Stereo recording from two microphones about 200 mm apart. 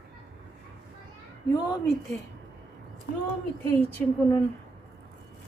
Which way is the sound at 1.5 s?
20° left (ahead or behind).